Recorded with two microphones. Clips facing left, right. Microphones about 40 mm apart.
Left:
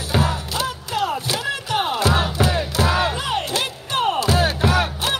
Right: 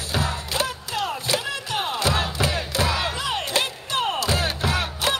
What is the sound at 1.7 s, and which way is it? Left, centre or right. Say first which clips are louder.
Music: left 5 dB; centre.